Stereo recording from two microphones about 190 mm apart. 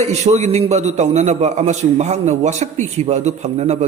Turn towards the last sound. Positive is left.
turn(degrees=-35)  # may be behind; listen again after turning